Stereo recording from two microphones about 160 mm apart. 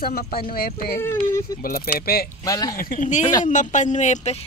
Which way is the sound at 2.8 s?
55° left (ahead or behind).